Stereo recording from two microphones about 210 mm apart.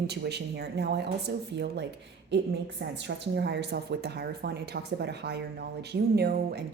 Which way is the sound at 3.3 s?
55° right (ahead or behind).